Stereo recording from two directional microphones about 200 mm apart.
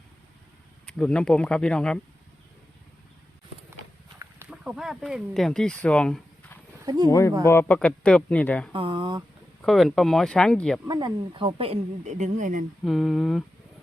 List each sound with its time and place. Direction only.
0.9 s speech: 5° left (ahead or behind)
4.2 s speech: 10° right (ahead or behind)
6.8 s speech: 20° right (ahead or behind)
7.1 s speech: 15° left (ahead or behind)
8.7 s speech: 25° right (ahead or behind)
9.6 s speech: centre (ahead or behind)
10.8 s speech: 20° right (ahead or behind); by 12.6 s 40° right (ahead or behind)
12.8 s speech: centre (ahead or behind)